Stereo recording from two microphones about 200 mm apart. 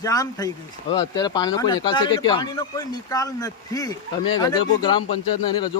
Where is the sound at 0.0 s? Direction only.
20° left (ahead or behind).